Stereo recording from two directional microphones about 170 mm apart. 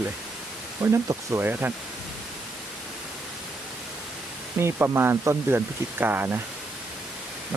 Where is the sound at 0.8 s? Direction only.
20° right (ahead or behind).